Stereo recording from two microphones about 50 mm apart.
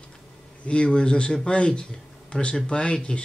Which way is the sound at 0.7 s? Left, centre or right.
Centre.